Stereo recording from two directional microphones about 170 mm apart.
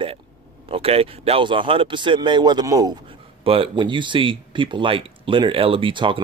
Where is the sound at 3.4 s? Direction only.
30° right (ahead or behind).